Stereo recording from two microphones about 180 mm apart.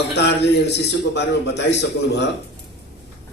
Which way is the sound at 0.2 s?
70° left (ahead or behind).